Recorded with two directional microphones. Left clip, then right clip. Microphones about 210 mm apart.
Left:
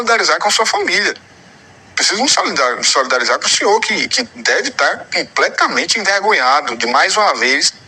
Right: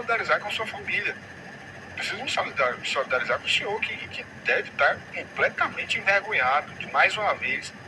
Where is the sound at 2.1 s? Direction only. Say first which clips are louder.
Left 11 dB; 55° left (ahead or behind).